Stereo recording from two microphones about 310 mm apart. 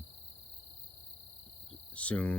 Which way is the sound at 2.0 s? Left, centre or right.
Centre.